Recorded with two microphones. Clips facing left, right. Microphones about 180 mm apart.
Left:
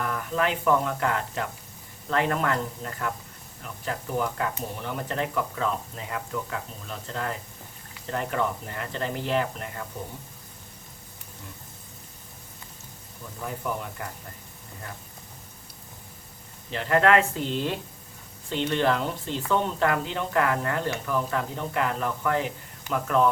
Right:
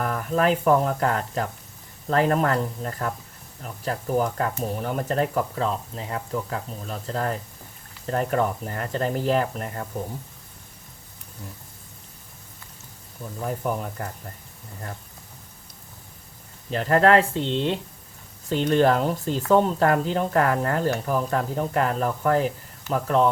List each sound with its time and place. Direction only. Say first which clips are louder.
0.0 s speech: right 4 dB; 40° right (ahead or behind)
13.4 s speech: right 4 dB; 40° right (ahead or behind)
16.7 s speech: right 3 dB; 40° right (ahead or behind)
18.4 s speech: right 5 dB; 40° right (ahead or behind)